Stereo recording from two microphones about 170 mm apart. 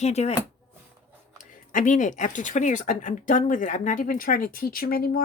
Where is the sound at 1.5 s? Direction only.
50° left (ahead or behind).